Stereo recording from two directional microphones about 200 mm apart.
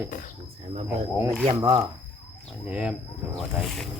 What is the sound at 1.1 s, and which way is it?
Speech, 10° right (ahead or behind).